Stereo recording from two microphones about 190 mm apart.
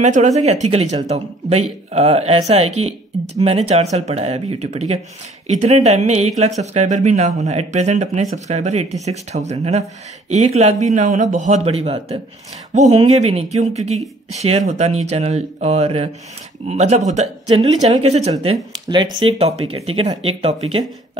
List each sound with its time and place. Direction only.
0.0 s speech: 40° right (ahead or behind)
18.7 s speech: 25° right (ahead or behind)